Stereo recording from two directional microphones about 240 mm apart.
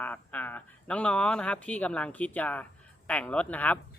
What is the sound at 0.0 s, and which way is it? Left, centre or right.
Speech, centre.